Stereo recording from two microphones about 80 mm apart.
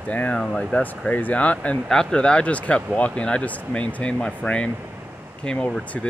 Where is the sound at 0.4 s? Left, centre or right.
Centre.